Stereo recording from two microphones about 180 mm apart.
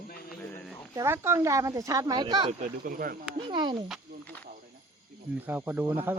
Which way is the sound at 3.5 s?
25° right (ahead or behind).